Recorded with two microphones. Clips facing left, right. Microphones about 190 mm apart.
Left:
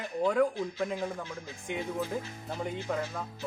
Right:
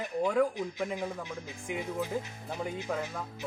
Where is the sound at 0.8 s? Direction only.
15° right (ahead or behind).